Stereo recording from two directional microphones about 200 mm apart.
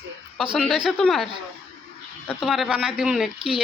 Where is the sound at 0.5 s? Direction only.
Centre (ahead or behind).